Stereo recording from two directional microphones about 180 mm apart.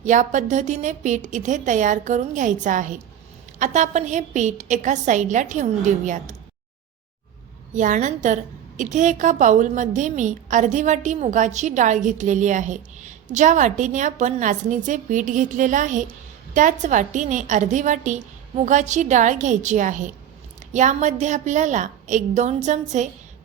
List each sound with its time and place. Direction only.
0.0 s a woman's voice: 45° right (ahead or behind)
7.7 s a woman's voice: 45° right (ahead or behind)